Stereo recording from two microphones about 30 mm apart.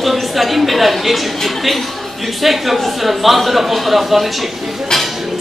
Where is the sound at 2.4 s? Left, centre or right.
Centre.